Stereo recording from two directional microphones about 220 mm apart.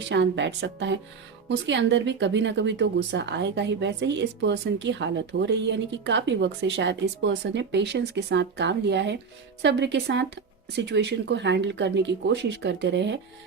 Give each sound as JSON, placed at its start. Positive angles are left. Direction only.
{"t": 0.1, "sound": "speech", "side_deg": -55}